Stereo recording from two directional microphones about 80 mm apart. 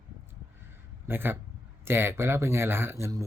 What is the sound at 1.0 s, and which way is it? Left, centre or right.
Speech, right.